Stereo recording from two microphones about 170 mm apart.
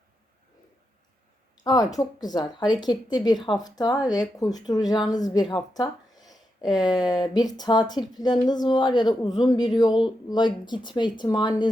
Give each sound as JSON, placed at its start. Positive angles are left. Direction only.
{"t": 1.6, "sound": "speech", "side_deg": 20}